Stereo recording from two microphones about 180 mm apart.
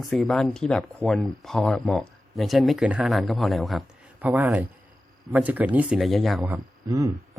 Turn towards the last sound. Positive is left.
turn(degrees=-20)  # may be behind; listen again after turning